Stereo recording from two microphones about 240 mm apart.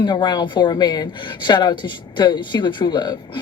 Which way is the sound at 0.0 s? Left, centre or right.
Centre.